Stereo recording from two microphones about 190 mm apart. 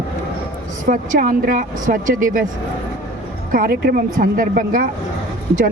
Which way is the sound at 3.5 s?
50° right (ahead or behind).